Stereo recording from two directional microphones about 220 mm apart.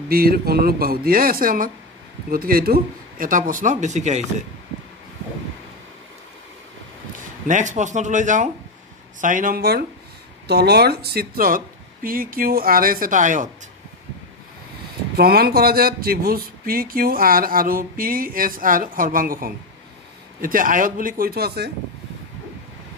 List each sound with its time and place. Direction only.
0.1 s speech: 45° right (ahead or behind)
7.4 s speech: 35° right (ahead or behind)
15.1 s speech: 45° right (ahead or behind)